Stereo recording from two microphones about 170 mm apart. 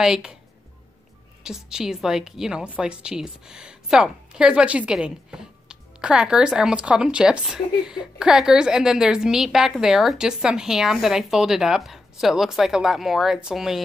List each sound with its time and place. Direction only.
0.0 s a woman's voice: 5° right (ahead or behind)
1.4 s a woman's voice: 5° right (ahead or behind)